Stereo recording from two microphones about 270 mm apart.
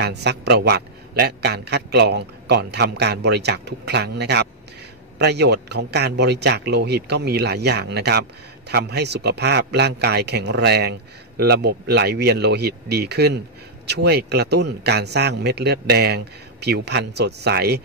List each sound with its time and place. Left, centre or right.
0.0 s speech: right